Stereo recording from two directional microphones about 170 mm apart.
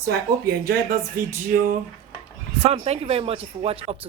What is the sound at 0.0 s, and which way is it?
Speech, 70° right (ahead or behind).